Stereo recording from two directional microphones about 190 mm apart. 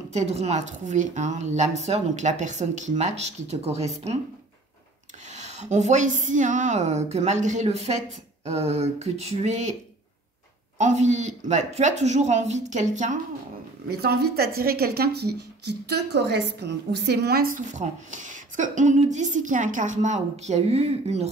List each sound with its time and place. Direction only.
0.1 s a woman's voice: 35° right (ahead or behind)
5.3 s a woman's voice: 35° right (ahead or behind)
10.8 s a woman's voice: 40° right (ahead or behind)
13.8 s speech: 55° right (ahead or behind); by 21.3 s 35° right (ahead or behind)